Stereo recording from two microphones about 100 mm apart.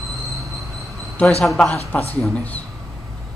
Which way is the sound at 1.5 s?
Centre (ahead or behind).